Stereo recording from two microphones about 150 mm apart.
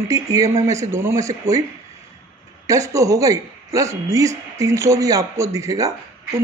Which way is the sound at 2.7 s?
20° right (ahead or behind).